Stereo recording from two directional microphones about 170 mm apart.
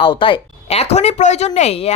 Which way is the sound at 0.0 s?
30° left (ahead or behind).